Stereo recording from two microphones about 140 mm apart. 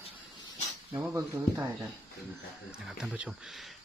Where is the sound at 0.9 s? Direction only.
15° right (ahead or behind).